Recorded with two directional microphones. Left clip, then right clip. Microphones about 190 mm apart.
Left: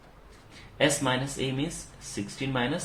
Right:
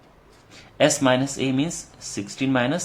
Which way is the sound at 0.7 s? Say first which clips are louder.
Right 7 dB; 50° right (ahead or behind).